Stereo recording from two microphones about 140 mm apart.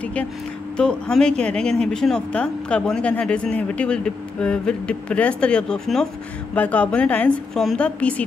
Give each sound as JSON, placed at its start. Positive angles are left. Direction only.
{"t": 0.0, "sound": "speech", "side_deg": 10}